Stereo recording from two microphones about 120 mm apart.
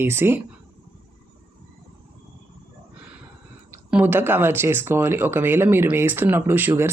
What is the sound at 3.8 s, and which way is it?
Speech, 15° right (ahead or behind).